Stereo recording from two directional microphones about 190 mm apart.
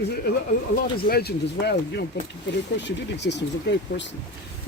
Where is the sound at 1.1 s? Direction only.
55° left (ahead or behind).